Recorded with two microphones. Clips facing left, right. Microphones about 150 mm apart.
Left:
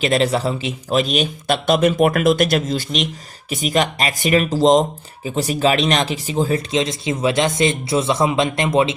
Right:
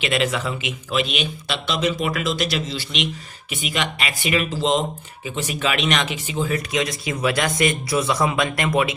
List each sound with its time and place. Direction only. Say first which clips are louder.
0.0 s speech: left 5 dB; 35° left (ahead or behind)